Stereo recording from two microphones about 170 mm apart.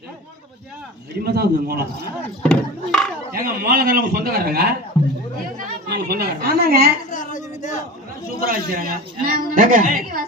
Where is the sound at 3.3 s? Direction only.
60° right (ahead or behind).